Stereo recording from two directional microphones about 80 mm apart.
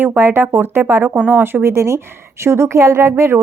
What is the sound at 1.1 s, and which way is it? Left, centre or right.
Speech, centre.